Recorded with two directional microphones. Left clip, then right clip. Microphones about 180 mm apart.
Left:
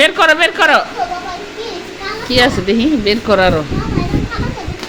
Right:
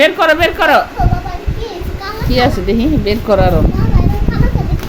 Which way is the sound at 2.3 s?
10° right (ahead or behind).